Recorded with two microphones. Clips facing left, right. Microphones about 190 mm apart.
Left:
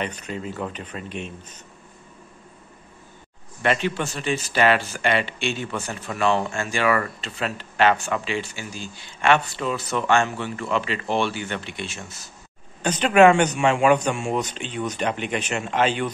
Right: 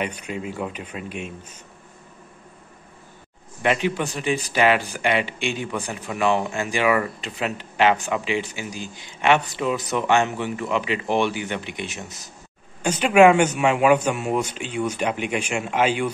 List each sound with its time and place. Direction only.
0.0 s speech: 10° right (ahead or behind)
3.6 s speech: 15° right (ahead or behind)